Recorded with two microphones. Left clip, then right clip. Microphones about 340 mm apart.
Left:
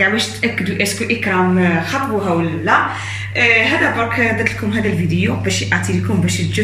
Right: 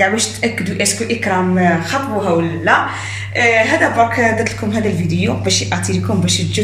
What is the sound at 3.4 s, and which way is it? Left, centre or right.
A woman's voice, right.